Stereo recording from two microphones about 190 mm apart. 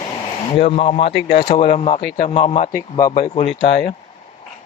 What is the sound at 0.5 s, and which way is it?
Speech, 30° left (ahead or behind).